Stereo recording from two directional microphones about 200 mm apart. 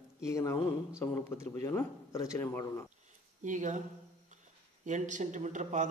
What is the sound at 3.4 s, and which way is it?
Speech, 40° right (ahead or behind).